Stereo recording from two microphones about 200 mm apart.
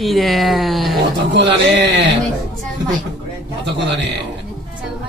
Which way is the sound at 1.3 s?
60° right (ahead or behind).